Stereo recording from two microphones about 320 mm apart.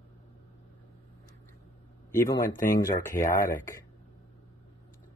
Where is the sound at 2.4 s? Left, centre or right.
Left.